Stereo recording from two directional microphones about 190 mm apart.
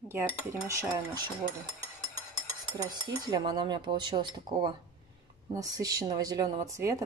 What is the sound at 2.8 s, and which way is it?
Speech, 20° right (ahead or behind).